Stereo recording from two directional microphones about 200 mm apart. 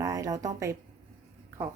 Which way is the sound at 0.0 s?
15° right (ahead or behind).